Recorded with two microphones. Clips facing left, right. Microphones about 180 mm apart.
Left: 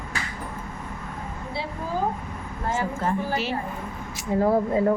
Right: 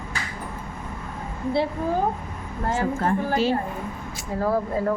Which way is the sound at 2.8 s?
55° right (ahead or behind).